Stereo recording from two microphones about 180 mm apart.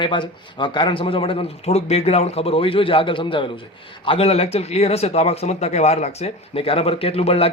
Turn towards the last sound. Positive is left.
turn(degrees=30)  # may be behind; listen again after turning